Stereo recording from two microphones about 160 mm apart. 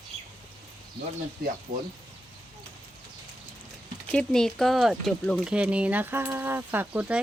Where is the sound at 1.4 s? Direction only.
70° right (ahead or behind).